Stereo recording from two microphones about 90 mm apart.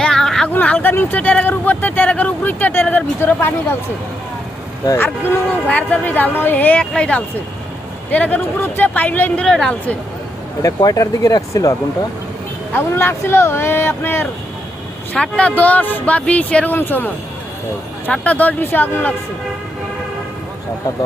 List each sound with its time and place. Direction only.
0.0 s a sound: 5° left (ahead or behind)
0.5 s speech: 20° left (ahead or behind)
4.9 s speech: 20° left (ahead or behind); by 9.7 s 5° left (ahead or behind)
10.6 s speech: 40° left (ahead or behind)
12.7 s speech: 25° left (ahead or behind)
15.1 s speech: 15° left (ahead or behind)